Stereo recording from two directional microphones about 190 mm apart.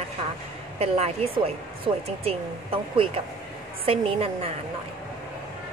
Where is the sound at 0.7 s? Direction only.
35° right (ahead or behind).